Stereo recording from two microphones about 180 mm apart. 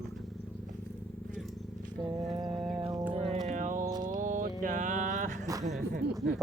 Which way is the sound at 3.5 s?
45° right (ahead or behind).